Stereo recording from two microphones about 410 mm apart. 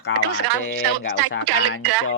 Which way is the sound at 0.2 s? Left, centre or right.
Right.